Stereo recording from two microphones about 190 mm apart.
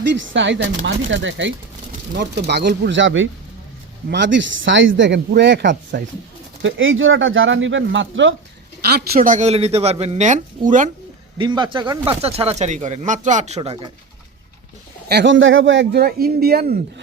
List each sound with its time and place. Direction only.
0.0 s a man's voice: 70° right (ahead or behind)
2.1 s speech: 60° right (ahead or behind); by 3.2 s 80° right
4.1 s a man's voice: 70° right (ahead or behind)
6.6 s speech: 90° right
8.8 s speech: 55° right (ahead or behind)
11.3 s speech: 25° right (ahead or behind)
13.6 s speech: 25° right (ahead or behind)
15.1 s speech: 75° right (ahead or behind); by 16.7 s 55° right (ahead or behind)